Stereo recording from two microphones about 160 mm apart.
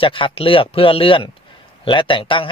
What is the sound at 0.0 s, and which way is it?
Speech, 35° left (ahead or behind).